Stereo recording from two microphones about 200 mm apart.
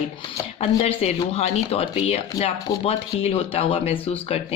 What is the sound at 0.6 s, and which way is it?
Speech, 30° left (ahead or behind).